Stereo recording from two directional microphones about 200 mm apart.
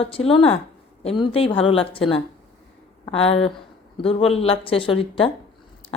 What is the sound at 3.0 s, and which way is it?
A woman's voice, 30° left (ahead or behind).